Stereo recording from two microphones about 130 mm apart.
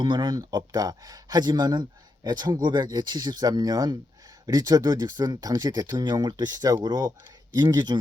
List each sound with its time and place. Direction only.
0.0 s speech: 35° right (ahead or behind)